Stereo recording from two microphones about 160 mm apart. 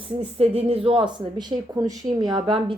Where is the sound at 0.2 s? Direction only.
40° right (ahead or behind).